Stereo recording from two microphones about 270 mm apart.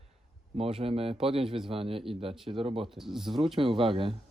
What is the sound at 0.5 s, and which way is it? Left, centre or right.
Speech, right.